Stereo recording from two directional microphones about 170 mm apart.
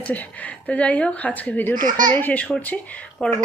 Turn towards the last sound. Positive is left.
turn(degrees=10)  # may be behind; listen again after turning